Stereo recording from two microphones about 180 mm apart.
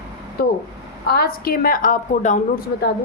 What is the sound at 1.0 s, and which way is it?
A woman's voice, 60° left (ahead or behind).